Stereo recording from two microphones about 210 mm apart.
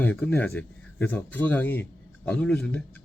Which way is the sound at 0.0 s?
10° left (ahead or behind).